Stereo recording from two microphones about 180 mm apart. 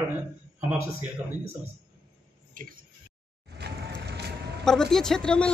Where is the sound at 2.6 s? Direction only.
50° right (ahead or behind).